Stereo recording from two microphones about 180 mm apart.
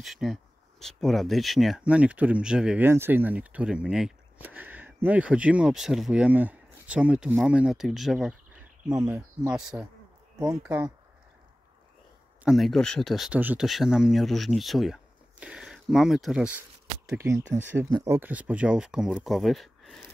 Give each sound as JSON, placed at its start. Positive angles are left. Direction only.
{"t": 0.0, "sound": "speech", "side_deg": 0}
{"t": 8.8, "sound": "speech", "side_deg": -15}
{"t": 12.4, "sound": "speech", "side_deg": 0}